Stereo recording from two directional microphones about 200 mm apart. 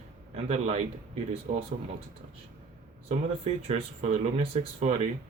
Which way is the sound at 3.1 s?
30° right (ahead or behind).